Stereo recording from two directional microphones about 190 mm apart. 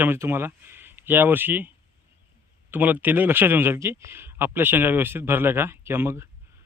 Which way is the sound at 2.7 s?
10° right (ahead or behind).